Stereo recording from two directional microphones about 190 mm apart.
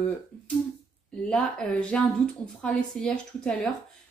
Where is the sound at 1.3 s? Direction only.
5° left (ahead or behind).